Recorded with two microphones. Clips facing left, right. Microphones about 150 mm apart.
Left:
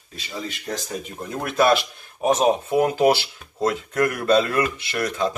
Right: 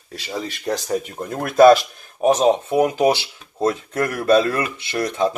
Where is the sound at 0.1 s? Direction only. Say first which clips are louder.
Right 4 dB; 75° right (ahead or behind).